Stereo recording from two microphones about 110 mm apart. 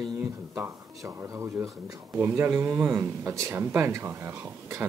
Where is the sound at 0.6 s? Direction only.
20° right (ahead or behind).